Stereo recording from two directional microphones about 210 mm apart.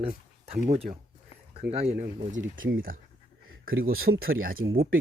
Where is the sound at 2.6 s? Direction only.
50° right (ahead or behind).